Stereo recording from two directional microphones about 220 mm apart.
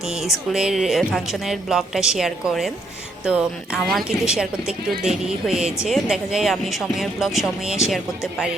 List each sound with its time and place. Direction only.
0.5 s speech: centre (ahead or behind)